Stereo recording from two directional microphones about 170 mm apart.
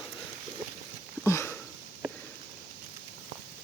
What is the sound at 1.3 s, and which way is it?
Sniff, 15° left (ahead or behind).